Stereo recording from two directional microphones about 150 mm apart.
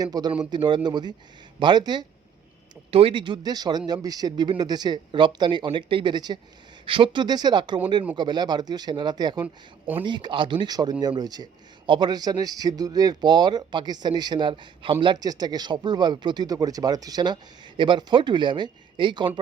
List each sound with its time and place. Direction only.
0.0 s speech: 25° right (ahead or behind)